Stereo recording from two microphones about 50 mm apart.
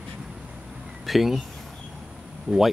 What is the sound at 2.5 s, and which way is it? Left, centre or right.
Speech, right.